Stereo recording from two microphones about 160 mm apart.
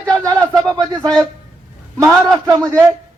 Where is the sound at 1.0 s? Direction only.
5° left (ahead or behind).